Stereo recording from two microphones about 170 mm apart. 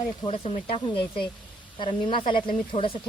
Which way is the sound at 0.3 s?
35° left (ahead or behind).